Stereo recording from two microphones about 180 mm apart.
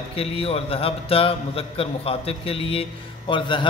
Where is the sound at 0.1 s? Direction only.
30° left (ahead or behind).